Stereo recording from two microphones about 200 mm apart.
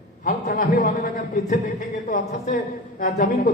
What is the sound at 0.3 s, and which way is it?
A man's voice, 45° left (ahead or behind).